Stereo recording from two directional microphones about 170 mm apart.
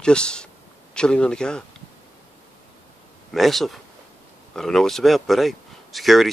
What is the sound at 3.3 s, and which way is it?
Speech, centre (ahead or behind).